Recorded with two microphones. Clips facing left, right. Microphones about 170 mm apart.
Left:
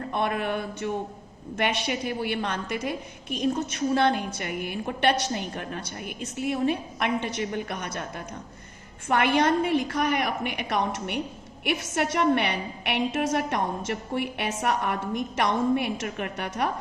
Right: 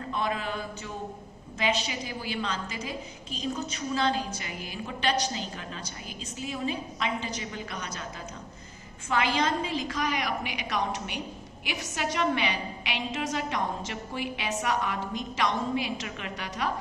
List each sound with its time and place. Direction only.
0.1 s a woman's voice: 60° left (ahead or behind)
9.0 s a woman's voice: 65° left (ahead or behind)